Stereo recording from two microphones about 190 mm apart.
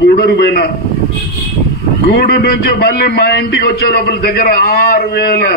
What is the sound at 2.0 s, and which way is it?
A man's voice, 55° left (ahead or behind).